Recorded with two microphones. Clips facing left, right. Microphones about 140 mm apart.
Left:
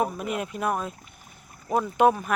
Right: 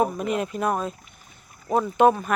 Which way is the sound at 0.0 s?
5° left (ahead or behind).